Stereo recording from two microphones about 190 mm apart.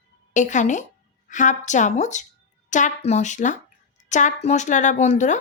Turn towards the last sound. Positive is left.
turn(degrees=40)  # may be behind; listen again after turning